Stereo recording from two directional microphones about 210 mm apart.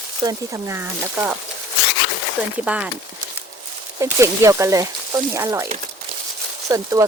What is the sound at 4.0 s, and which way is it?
Speech, 15° right (ahead or behind).